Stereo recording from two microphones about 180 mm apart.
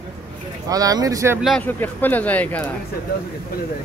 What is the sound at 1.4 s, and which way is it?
Speech, 5° left (ahead or behind).